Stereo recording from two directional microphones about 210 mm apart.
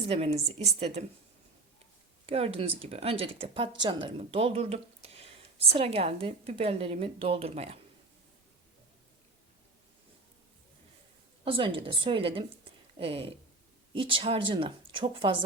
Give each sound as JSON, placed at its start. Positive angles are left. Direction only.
{"t": 0.1, "sound": "a woman's voice", "side_deg": -30}
{"t": 2.2, "sound": "speech", "side_deg": -25}
{"t": 11.4, "sound": "speech", "side_deg": -25}